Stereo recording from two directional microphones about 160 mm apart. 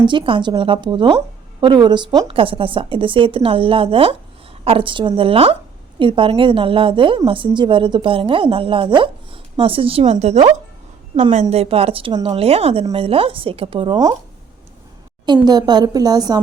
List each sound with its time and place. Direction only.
0.0 s a woman's voice: 30° right (ahead or behind)
15.4 s a woman's voice: 25° right (ahead or behind)